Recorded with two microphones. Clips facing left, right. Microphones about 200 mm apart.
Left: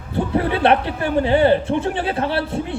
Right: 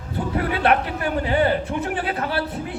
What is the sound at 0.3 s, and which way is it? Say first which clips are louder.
A man's voice: left 3 dB; 30° left (ahead or behind).